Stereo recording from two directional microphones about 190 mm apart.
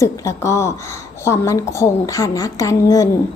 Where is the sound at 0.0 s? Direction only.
15° left (ahead or behind).